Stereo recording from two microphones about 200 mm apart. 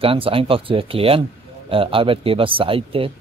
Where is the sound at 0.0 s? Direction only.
25° right (ahead or behind).